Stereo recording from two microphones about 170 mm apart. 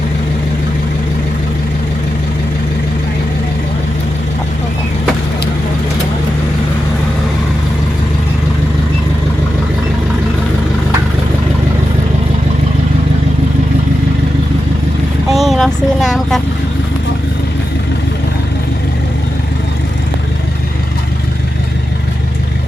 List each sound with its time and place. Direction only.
15.3 s vehicle: centre (ahead or behind)